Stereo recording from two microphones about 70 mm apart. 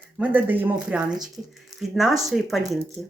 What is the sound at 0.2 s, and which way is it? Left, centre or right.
Speech, right.